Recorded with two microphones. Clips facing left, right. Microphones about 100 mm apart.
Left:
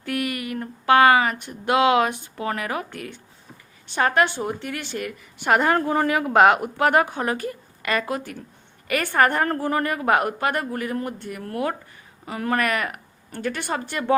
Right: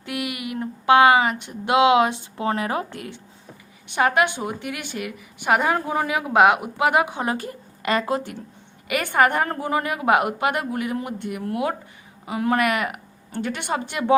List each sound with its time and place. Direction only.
0.0 s speech: 15° right (ahead or behind)
3.8 s a woman's voice: 10° right (ahead or behind)
7.3 s speech: 30° right (ahead or behind)
8.9 s a woman's voice: 15° right (ahead or behind)